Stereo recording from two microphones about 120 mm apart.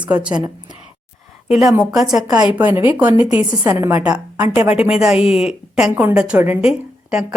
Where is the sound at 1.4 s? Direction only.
5° right (ahead or behind); by 4.0 s 25° right (ahead or behind).